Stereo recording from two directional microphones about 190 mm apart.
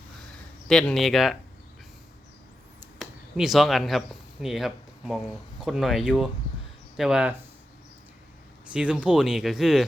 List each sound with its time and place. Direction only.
0.7 s speech: 5° left (ahead or behind)
3.0 s speech: centre (ahead or behind)
8.7 s speech: 5° right (ahead or behind)